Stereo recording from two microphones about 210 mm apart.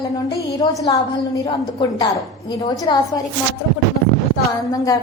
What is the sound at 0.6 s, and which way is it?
A woman's voice, 20° left (ahead or behind).